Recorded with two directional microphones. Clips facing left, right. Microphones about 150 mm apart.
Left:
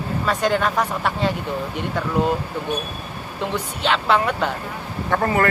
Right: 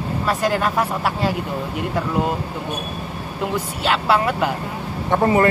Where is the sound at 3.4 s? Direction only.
5° right (ahead or behind).